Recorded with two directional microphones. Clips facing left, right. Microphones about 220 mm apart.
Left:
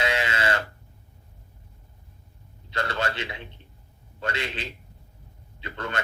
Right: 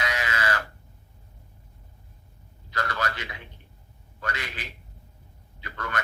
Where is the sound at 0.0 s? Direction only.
25° left (ahead or behind).